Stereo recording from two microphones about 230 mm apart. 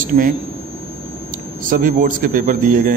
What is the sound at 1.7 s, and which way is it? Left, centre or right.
A man's voice, right.